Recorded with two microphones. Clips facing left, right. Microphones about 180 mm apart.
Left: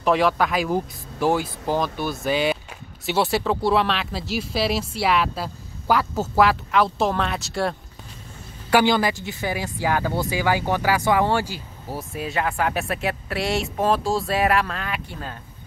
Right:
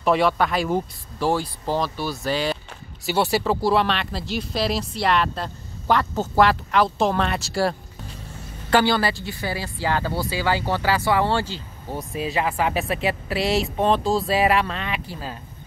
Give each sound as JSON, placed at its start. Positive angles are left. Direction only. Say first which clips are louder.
{"t": 0.0, "sound": "speech", "louder": "even", "side_deg": 0}
{"t": 1.8, "sound": "speech", "louder": "left 1 dB", "side_deg": 15}
{"t": 3.1, "sound": "speech", "louder": "even", "side_deg": 0}
{"t": 8.6, "sound": "speech", "louder": "left 1 dB", "side_deg": 15}